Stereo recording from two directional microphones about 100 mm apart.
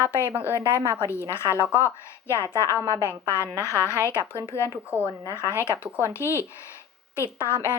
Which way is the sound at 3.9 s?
25° right (ahead or behind).